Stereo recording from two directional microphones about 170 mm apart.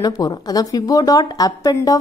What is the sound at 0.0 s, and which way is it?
A woman's voice, 20° left (ahead or behind).